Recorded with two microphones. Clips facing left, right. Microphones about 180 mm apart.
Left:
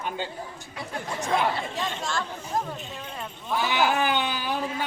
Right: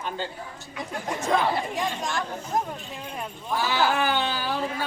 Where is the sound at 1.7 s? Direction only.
15° right (ahead or behind).